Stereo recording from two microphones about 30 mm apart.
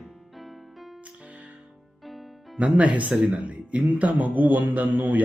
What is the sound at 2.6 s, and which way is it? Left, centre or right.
Speech, right.